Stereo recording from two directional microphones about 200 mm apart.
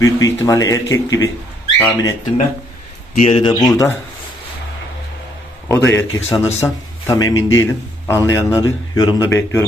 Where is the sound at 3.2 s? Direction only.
25° left (ahead or behind).